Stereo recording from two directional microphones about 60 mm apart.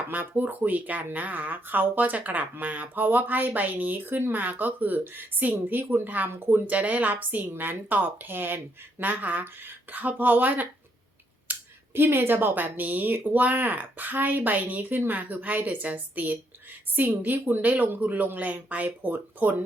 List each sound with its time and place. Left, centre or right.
0.1 s a woman's voice: right
6.7 s a woman's voice: right
11.5 s a sound: right
11.9 s a woman's voice: right